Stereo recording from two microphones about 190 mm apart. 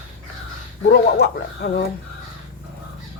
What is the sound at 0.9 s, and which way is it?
Speech, 55° left (ahead or behind).